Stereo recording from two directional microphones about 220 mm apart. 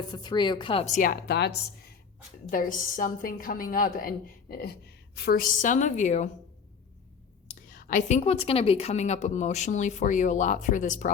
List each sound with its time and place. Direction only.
0.1 s a woman's voice: 20° left (ahead or behind)
1.3 s a woman's voice: 50° left (ahead or behind)
2.5 s a woman's voice: 40° left (ahead or behind)
7.4 s a woman's voice: 40° left (ahead or behind)